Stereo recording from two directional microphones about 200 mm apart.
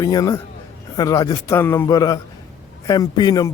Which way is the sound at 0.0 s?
15° left (ahead or behind).